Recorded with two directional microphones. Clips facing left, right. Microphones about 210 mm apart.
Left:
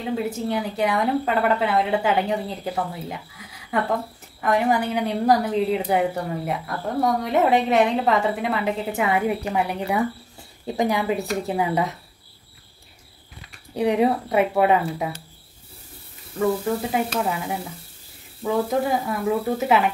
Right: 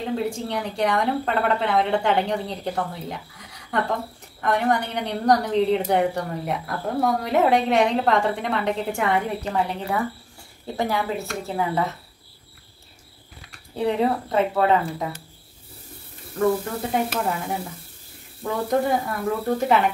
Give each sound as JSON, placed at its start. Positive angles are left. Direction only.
{"t": 0.1, "sound": "a woman's voice", "side_deg": 5}
{"t": 13.7, "sound": "speech", "side_deg": 15}
{"t": 16.9, "sound": "a woman's voice", "side_deg": 0}